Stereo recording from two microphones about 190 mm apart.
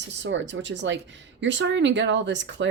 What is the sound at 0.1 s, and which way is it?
Speech, 70° right (ahead or behind).